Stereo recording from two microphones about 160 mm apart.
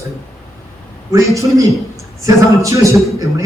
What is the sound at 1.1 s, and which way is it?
Speech, 20° right (ahead or behind).